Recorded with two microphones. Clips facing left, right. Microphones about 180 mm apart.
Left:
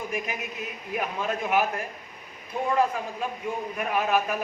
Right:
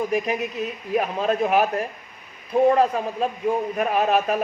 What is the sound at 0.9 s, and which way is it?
Speech, 30° right (ahead or behind).